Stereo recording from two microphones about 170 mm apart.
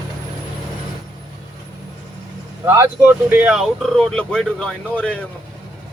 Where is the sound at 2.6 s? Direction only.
10° right (ahead or behind); by 5.1 s 5° left (ahead or behind).